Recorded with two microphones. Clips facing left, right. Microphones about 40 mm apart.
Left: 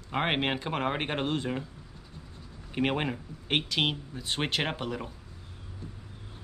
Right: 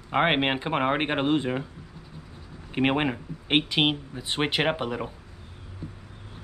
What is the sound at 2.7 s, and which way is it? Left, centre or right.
Speech, right.